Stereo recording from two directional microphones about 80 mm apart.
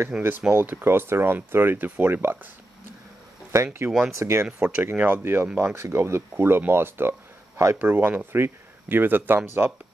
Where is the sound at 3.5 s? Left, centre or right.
Right.